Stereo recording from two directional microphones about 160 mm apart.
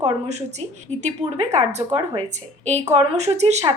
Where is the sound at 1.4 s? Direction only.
45° right (ahead or behind).